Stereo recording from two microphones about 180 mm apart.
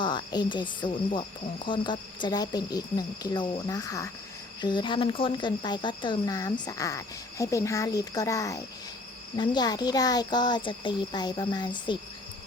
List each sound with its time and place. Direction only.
0.0 s speech: 25° left (ahead or behind)